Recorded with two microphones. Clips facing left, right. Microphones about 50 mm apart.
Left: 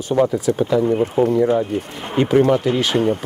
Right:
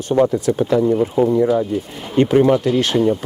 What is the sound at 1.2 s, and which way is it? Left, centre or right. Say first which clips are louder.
Speech: even; left.